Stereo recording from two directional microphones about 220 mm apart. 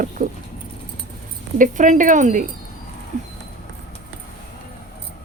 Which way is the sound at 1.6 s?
35° right (ahead or behind).